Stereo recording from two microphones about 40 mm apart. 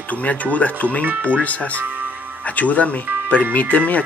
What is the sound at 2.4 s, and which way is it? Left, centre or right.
Speech, left.